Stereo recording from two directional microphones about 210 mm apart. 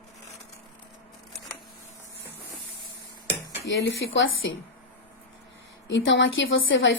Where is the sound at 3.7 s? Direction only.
60° left (ahead or behind).